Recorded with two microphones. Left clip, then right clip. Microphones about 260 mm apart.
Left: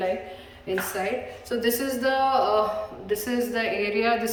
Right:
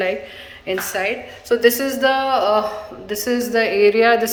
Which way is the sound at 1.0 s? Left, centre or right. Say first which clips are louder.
Right 7 dB; centre.